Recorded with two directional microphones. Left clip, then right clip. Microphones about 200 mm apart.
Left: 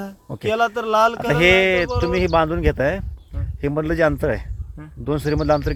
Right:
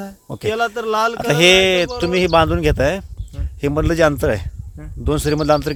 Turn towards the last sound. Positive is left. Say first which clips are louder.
# right 3 dB
turn(degrees=-40)  # may be behind; listen again after turning